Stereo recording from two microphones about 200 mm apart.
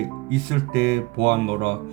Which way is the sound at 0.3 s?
55° right (ahead or behind).